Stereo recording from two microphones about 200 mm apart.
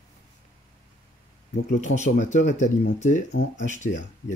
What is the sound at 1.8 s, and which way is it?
Speech, 35° left (ahead or behind).